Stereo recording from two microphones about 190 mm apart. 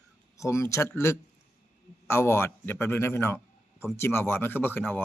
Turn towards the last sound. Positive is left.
turn(degrees=10)  # may be behind; listen again after turning